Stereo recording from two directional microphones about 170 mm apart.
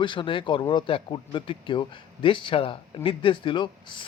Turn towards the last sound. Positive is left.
turn(degrees=25)  # may be behind; listen again after turning